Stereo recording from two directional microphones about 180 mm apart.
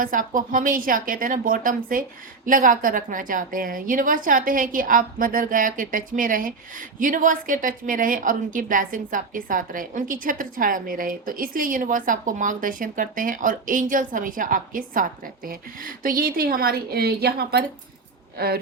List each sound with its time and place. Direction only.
0.0 s a woman's voice: 50° right (ahead or behind)